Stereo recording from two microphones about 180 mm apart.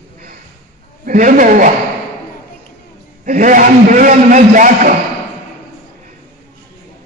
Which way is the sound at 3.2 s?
45° right (ahead or behind).